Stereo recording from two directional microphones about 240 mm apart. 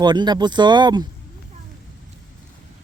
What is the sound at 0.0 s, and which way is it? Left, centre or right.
Speech, centre.